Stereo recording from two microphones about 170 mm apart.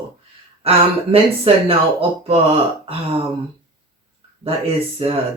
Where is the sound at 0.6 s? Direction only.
35° right (ahead or behind).